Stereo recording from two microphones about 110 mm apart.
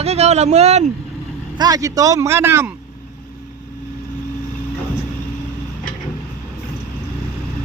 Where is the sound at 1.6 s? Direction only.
35° right (ahead or behind).